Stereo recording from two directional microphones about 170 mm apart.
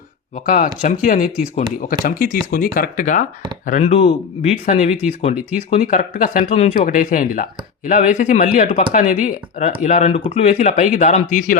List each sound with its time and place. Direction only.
0.3 s speech: 50° left (ahead or behind)